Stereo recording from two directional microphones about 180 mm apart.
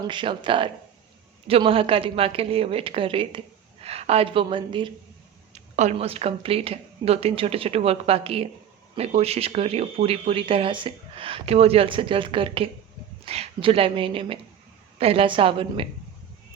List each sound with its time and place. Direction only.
0.0 s speech: 25° right (ahead or behind)
5.5 s speech: 40° right (ahead or behind)